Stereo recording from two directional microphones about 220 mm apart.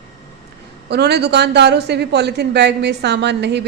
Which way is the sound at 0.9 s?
50° right (ahead or behind).